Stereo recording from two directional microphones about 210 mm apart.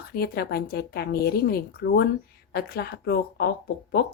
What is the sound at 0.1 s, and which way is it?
Speech, 45° left (ahead or behind).